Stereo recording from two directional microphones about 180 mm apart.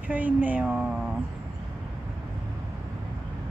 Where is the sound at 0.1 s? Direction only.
10° right (ahead or behind).